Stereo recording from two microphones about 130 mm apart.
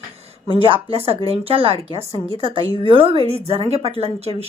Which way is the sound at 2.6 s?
35° left (ahead or behind).